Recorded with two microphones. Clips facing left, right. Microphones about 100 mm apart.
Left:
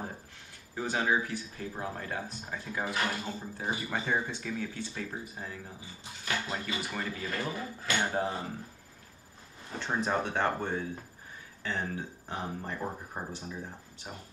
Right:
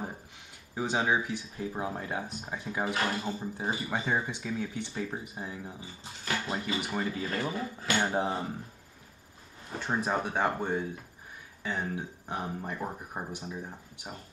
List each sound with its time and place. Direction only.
0.7 s speech: 15° right (ahead or behind)
9.7 s speech: 10° right (ahead or behind)